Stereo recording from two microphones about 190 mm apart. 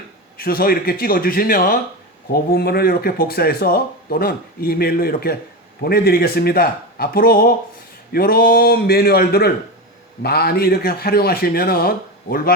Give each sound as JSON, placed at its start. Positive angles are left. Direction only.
{"t": 0.3, "sound": "speech", "side_deg": 50}